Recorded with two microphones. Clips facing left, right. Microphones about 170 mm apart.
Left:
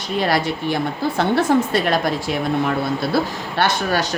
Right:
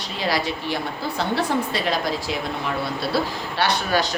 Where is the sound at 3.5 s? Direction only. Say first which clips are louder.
Left 2 dB; 45° left (ahead or behind).